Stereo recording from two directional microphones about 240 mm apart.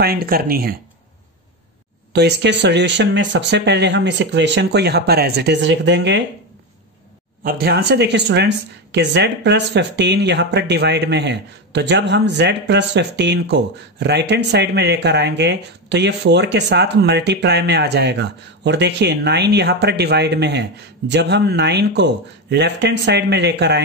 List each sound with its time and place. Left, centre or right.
0.0 s speech: right
2.1 s speech: right
7.4 s speech: right